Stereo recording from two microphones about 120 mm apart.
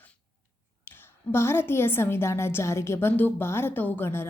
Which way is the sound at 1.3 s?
20° left (ahead or behind).